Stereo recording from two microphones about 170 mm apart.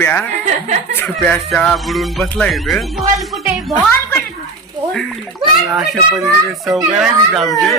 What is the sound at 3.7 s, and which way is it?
Speech, 15° left (ahead or behind).